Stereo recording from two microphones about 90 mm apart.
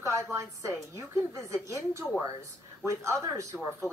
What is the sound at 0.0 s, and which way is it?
A woman's voice, 35° right (ahead or behind).